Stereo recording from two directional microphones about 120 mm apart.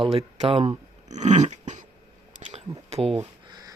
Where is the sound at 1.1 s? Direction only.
75° right (ahead or behind); by 1.9 s 90° right.